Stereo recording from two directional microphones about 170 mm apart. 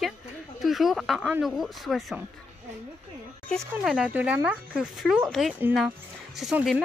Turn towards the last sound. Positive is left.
turn(degrees=-5)  # may be behind; listen again after turning